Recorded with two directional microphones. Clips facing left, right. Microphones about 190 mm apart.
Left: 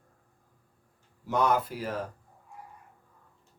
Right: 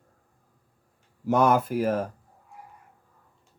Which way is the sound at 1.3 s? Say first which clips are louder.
Right 5 dB; 50° right (ahead or behind).